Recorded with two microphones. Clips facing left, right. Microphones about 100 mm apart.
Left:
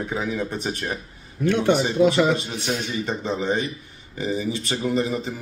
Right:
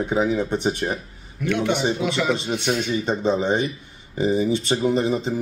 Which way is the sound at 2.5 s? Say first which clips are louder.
Right 4 dB; 60° right (ahead or behind).